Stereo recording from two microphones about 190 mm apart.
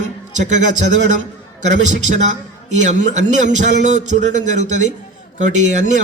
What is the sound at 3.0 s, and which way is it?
A man's voice, 40° right (ahead or behind).